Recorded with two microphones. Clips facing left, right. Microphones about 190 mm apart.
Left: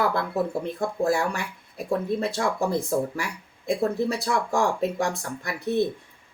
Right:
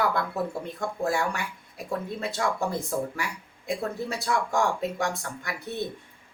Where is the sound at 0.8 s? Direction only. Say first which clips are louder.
Left 3 dB; 35° left (ahead or behind).